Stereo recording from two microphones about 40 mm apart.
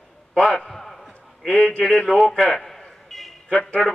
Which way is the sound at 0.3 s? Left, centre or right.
Centre.